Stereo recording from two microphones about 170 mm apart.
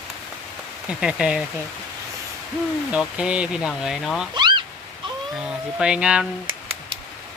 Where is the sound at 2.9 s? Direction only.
5° right (ahead or behind).